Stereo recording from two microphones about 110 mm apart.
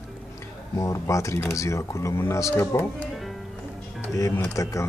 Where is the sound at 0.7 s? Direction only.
30° left (ahead or behind).